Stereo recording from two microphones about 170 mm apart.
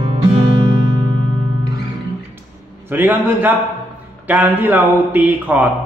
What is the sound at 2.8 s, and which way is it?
A man's voice, 10° right (ahead or behind).